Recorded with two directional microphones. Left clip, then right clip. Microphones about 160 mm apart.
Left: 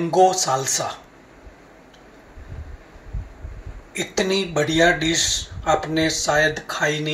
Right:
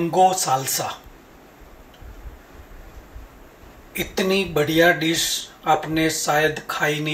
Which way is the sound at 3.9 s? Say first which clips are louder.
Left 1 dB; 55° left (ahead or behind).